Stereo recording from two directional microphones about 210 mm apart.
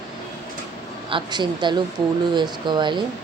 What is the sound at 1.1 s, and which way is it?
Speech, 20° right (ahead or behind).